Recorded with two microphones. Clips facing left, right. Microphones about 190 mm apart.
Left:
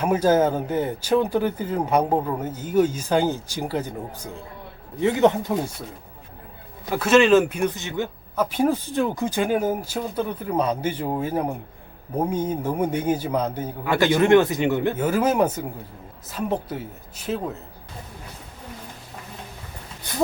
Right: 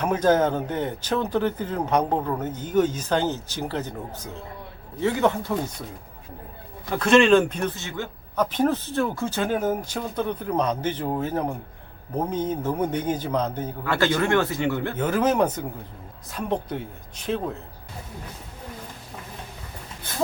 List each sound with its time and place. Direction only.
0.0 s speech: 10° left (ahead or behind)
6.9 s speech: 5° left (ahead or behind)